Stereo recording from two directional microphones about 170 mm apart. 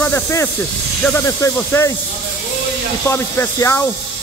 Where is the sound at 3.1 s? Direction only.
15° left (ahead or behind).